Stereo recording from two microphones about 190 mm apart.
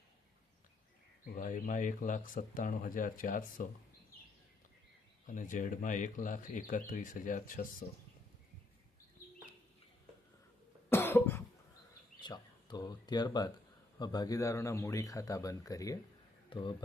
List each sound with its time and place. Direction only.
1.4 s speech: 45° left (ahead or behind)
5.2 s speech: 40° left (ahead or behind)
10.8 s cough: 10° left (ahead or behind)
12.2 s speech: 25° left (ahead or behind)